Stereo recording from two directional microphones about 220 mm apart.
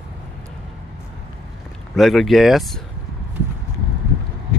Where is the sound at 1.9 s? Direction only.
Centre (ahead or behind).